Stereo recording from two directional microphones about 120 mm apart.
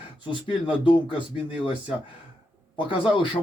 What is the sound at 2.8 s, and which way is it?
Speech, 45° left (ahead or behind).